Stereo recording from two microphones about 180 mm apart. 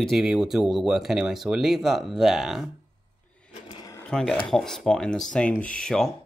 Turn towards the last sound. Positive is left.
turn(degrees=5)  # may be behind; listen again after turning